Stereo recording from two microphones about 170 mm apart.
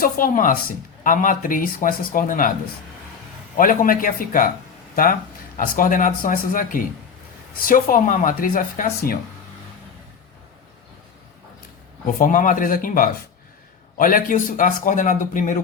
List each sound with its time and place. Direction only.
0.0 s a man's voice: 55° left (ahead or behind)
3.6 s speech: 55° left (ahead or behind)
5.5 s a man's voice: 55° left (ahead or behind)
12.0 s a man's voice: 50° left (ahead or behind)